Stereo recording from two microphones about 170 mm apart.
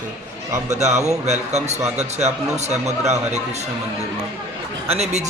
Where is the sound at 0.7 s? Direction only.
40° right (ahead or behind).